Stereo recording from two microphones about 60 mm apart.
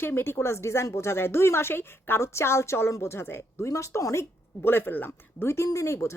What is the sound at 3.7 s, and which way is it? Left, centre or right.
Speech, left.